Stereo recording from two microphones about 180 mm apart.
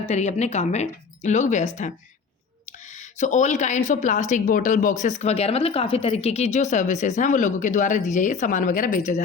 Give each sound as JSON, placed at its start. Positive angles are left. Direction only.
{"t": 0.0, "sound": "speech", "side_deg": 40}